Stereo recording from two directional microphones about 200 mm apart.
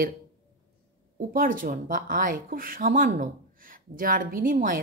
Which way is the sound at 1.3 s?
45° right (ahead or behind).